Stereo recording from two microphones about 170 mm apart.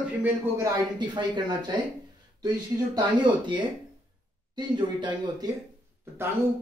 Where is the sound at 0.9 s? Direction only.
25° right (ahead or behind).